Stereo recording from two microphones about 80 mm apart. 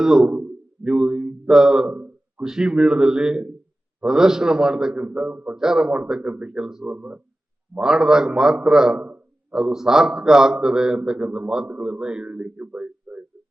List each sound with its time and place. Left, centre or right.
0.0 s a man's voice: centre
6.9 s speech: centre
7.8 s a man's voice: centre
9.0 s a sound: centre
9.6 s a man's voice: centre